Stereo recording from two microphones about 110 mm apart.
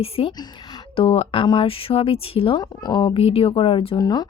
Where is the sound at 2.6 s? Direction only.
40° left (ahead or behind).